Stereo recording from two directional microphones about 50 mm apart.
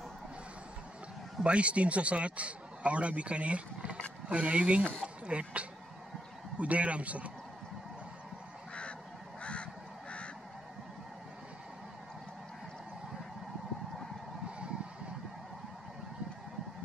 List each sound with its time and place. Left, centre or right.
1.4 s a man's voice: right
9.4 s goose: left